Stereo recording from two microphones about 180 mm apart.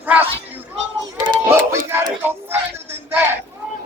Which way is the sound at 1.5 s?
15° right (ahead or behind).